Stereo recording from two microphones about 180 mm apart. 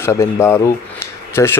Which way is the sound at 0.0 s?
15° left (ahead or behind).